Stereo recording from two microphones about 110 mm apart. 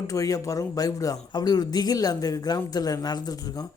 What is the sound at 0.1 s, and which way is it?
Speech, 30° left (ahead or behind).